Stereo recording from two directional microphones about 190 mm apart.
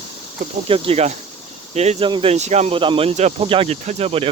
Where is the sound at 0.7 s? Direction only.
30° right (ahead or behind).